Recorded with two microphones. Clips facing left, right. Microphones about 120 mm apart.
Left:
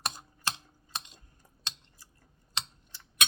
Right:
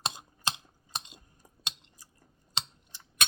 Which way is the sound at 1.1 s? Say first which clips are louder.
Right 3 dB; 15° right (ahead or behind).